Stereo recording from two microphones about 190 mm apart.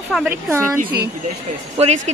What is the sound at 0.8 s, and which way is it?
Speech, 50° right (ahead or behind).